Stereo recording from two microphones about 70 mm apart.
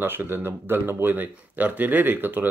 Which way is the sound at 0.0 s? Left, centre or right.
Right.